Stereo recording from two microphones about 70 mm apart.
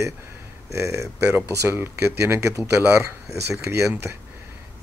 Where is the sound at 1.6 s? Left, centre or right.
Right.